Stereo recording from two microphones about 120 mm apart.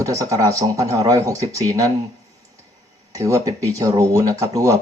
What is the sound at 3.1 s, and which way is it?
Speech, 25° right (ahead or behind).